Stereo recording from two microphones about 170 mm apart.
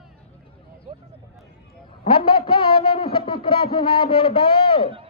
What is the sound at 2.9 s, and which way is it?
A man's voice, 35° left (ahead or behind).